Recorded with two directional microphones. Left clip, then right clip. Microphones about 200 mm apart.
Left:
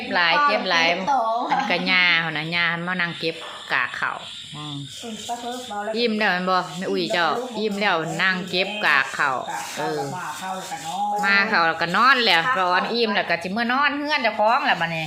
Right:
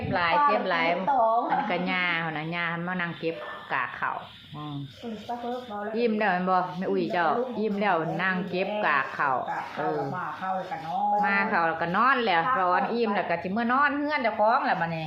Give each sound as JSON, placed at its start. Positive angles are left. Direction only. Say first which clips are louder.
{"t": 0.1, "sound": "speech", "louder": "left 4 dB", "side_deg": 25}
{"t": 5.9, "sound": "speech", "louder": "left 4 dB", "side_deg": 15}
{"t": 11.2, "sound": "speech", "louder": "left 10 dB", "side_deg": 20}